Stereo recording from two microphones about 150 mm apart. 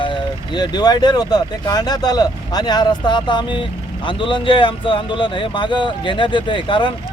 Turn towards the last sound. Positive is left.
turn(degrees=35)  # may be behind; listen again after turning